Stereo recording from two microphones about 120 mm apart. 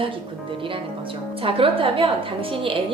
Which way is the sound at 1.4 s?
50° right (ahead or behind).